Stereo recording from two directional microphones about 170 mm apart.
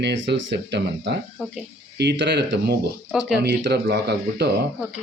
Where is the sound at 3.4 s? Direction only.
75° right (ahead or behind).